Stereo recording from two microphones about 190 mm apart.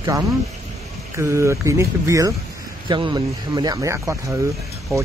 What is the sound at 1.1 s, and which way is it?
Speech, 15° right (ahead or behind).